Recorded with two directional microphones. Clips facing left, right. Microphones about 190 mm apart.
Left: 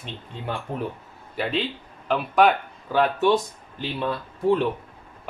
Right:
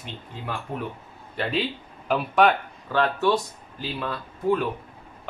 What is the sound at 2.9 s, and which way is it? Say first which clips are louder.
Speech: left 2 dB; 15° left (ahead or behind).